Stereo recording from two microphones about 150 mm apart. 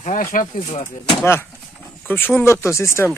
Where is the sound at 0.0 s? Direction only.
50° left (ahead or behind).